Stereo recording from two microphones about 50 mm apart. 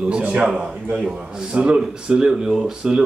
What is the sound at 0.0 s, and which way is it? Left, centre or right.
A man's voice, right.